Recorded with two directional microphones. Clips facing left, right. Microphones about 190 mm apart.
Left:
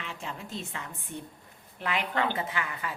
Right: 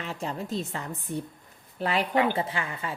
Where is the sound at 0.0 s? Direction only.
40° right (ahead or behind).